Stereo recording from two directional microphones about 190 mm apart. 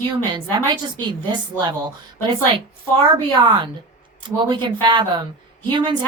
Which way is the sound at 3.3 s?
25° right (ahead or behind).